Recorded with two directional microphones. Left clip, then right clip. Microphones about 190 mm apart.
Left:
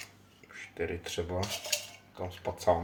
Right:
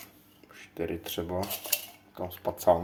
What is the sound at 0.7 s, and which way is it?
Cutlery, 35° right (ahead or behind).